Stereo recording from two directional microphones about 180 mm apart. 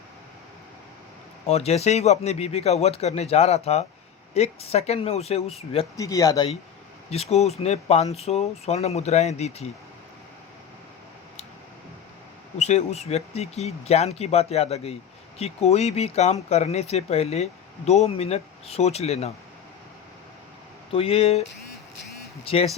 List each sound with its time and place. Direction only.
1.5 s speech: 35° left (ahead or behind)
6.0 s speech: 20° left (ahead or behind)
7.1 s speech: 35° left (ahead or behind)
12.5 s speech: 40° left (ahead or behind)
20.9 s speech: 30° left (ahead or behind)
22.4 s speech: 35° left (ahead or behind)